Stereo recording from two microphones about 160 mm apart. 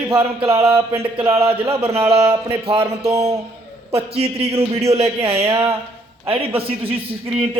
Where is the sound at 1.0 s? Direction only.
35° right (ahead or behind).